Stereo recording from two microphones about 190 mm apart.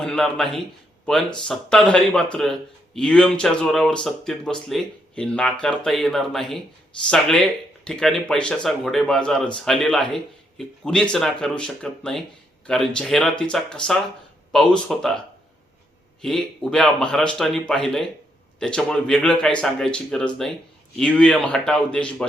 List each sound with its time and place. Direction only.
0.0 s speech: centre (ahead or behind)
16.2 s speech: 5° left (ahead or behind)